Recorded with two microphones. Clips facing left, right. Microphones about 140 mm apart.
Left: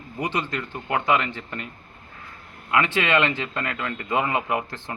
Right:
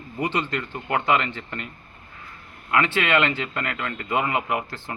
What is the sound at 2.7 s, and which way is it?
Speech, 15° left (ahead or behind).